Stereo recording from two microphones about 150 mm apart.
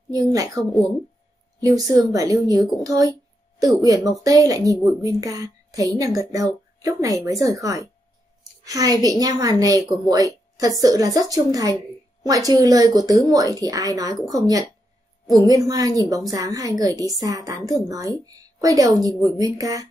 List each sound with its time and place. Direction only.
0.1 s a woman's voice: 25° right (ahead or behind)
2.8 s a sound: 25° right (ahead or behind)
3.8 s a woman's voice: 25° right (ahead or behind)